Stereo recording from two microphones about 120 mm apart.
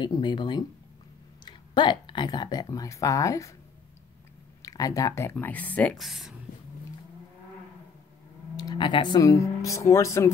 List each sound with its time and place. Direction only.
0.0 s speech: 40° left (ahead or behind)
4.6 s speech: 30° left (ahead or behind)
5.4 s speech: 15° left (ahead or behind)
5.9 s speech: centre (ahead or behind)
8.5 s speech: 40° left (ahead or behind)